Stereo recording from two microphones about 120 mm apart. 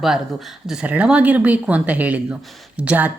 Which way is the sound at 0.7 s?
10° right (ahead or behind).